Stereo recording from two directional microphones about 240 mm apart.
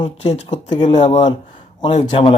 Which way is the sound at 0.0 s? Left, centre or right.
Left.